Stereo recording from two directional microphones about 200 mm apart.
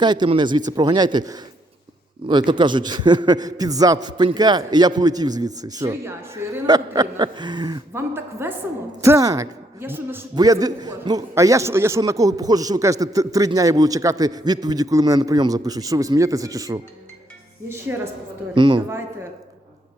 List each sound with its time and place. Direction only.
0.0 s a man's voice: 20° right (ahead or behind)
18.5 s a man's voice: 25° right (ahead or behind)